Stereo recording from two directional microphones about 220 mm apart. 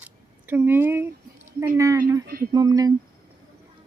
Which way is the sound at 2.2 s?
40° right (ahead or behind).